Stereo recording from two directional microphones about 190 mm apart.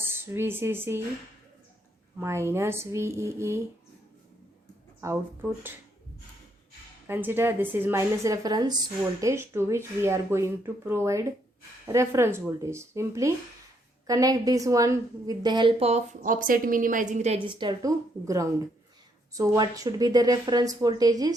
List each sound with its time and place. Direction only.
0.0 s speech: 10° right (ahead or behind)
2.1 s speech: 15° right (ahead or behind)
4.9 s speech: 15° right (ahead or behind)
7.1 s a woman's voice: 10° right (ahead or behind)